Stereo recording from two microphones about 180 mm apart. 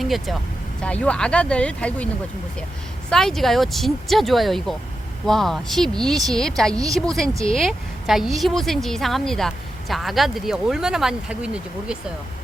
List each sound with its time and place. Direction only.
0.0 s speech: centre (ahead or behind)
3.1 s speech: centre (ahead or behind)